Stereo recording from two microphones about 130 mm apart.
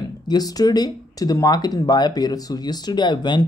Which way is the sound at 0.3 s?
30° left (ahead or behind).